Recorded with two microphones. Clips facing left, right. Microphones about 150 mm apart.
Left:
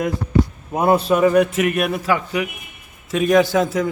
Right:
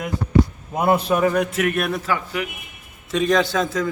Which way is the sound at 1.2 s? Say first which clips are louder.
Left 5 dB; 15° left (ahead or behind).